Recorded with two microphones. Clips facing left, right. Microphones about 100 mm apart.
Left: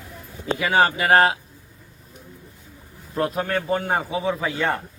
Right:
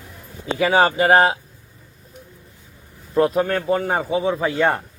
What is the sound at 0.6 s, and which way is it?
Speech, 30° right (ahead or behind).